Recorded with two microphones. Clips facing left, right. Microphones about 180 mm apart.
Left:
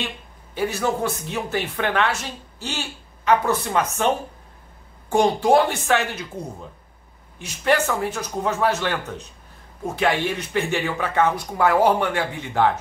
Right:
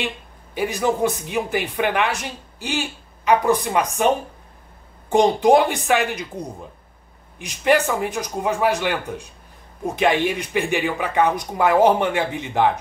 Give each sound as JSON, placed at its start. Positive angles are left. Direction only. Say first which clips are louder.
{"t": 0.6, "sound": "speech", "louder": "right 2 dB", "side_deg": -15}
{"t": 5.1, "sound": "speech", "louder": "right 2 dB", "side_deg": -20}